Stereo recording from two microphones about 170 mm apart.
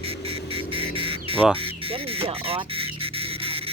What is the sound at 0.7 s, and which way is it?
Bird, 30° right (ahead or behind).